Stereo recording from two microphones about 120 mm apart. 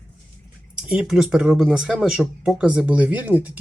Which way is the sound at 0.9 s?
5° right (ahead or behind).